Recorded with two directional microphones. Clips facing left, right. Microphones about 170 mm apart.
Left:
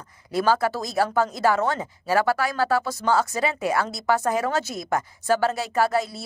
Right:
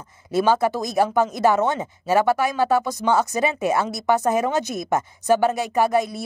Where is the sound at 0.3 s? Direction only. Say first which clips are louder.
Right 3 dB; 20° right (ahead or behind).